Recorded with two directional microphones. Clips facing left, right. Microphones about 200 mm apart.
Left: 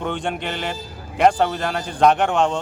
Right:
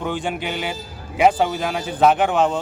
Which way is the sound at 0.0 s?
Centre (ahead or behind).